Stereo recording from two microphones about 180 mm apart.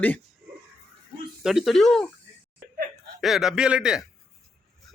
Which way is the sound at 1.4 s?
Centre (ahead or behind).